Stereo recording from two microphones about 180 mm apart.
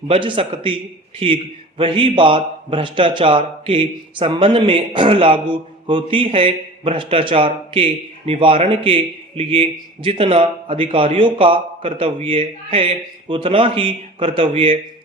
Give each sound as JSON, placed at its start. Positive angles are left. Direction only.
{"t": 0.1, "sound": "a man's voice", "side_deg": -30}